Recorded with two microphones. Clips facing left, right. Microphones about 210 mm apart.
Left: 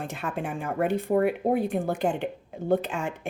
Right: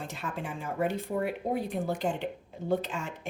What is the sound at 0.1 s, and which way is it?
A woman's voice, 55° left (ahead or behind).